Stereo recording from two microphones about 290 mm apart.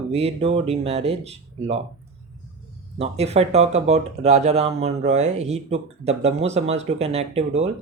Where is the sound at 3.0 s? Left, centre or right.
Right.